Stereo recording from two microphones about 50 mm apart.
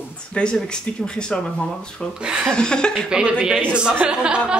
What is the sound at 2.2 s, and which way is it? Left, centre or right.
Speech, centre.